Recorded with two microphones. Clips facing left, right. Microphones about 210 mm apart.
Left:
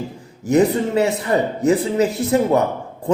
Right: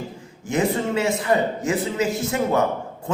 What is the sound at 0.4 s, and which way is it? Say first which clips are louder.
A man's voice: left 6 dB; 35° left (ahead or behind).